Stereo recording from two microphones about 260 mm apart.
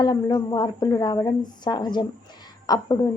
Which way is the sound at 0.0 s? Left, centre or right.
Centre.